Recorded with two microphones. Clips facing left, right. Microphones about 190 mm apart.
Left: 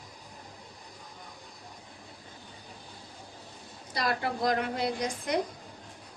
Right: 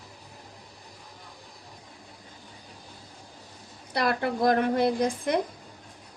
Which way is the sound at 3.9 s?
55° right (ahead or behind).